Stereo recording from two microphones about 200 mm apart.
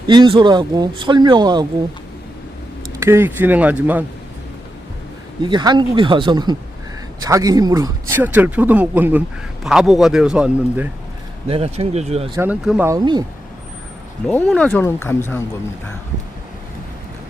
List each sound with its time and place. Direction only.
0.1 s speech: 25° right (ahead or behind)
3.0 s speech: 10° right (ahead or behind)
5.4 s a man's voice: 20° right (ahead or behind); by 10.8 s 5° right (ahead or behind)
11.4 s speech: 30° right (ahead or behind)
12.3 s speech: 10° right (ahead or behind)
12.9 s speech: 20° right (ahead or behind)
14.3 s speech: 5° left (ahead or behind)